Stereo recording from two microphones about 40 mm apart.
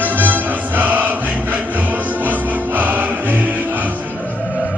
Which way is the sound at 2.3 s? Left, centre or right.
Right.